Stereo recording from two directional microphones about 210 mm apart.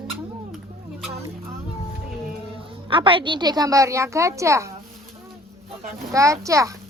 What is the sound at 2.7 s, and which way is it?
A woman's voice, 25° right (ahead or behind).